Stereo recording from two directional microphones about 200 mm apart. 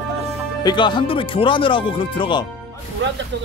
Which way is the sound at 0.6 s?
25° left (ahead or behind).